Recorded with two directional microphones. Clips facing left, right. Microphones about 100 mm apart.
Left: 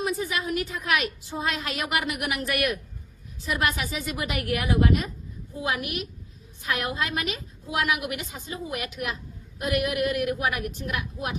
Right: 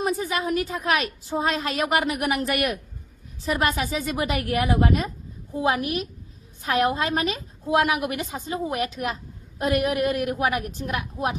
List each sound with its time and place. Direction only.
0.0 s a woman's voice: 35° right (ahead or behind)